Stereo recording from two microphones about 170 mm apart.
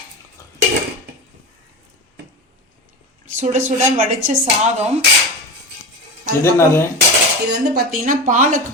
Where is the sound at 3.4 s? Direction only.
45° right (ahead or behind).